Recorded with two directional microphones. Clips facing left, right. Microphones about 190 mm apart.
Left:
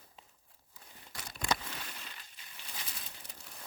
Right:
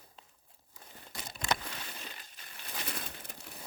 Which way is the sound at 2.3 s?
60° right (ahead or behind).